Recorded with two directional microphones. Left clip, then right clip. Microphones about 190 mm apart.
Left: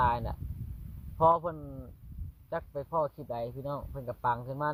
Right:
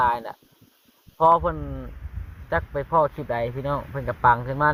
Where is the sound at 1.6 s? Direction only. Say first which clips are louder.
Right 10 dB; 15° right (ahead or behind).